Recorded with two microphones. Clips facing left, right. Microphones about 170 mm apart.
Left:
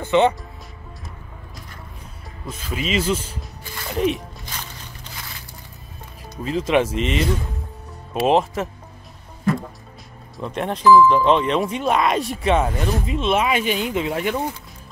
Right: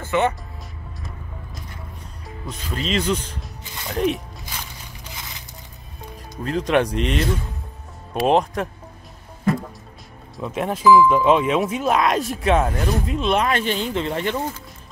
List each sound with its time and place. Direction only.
0.0 s speech: 20° left (ahead or behind)
2.4 s speech: 5° left (ahead or behind)
6.4 s speech: centre (ahead or behind)
10.3 s speech: centre (ahead or behind)